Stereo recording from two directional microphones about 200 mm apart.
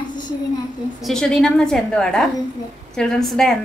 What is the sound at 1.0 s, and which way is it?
A woman's voice, centre (ahead or behind).